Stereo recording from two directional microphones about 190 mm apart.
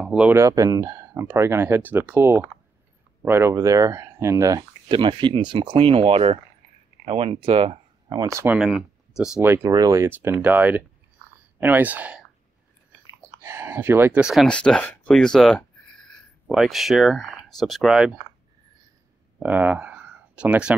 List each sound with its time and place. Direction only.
0.0 s speech: 5° right (ahead or behind)
0.4 s speech: 20° right (ahead or behind)
8.2 s speech: 15° right (ahead or behind)
8.5 s speech: 5° right (ahead or behind)
11.2 s a sound: 10° right (ahead or behind)
11.6 s speech: 10° right (ahead or behind)
19.4 s speech: 5° right (ahead or behind)